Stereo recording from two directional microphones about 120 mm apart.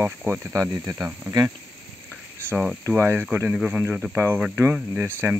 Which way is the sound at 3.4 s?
10° right (ahead or behind).